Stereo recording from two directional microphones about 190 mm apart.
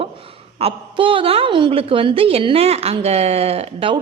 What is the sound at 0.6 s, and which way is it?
A woman's voice, 25° right (ahead or behind).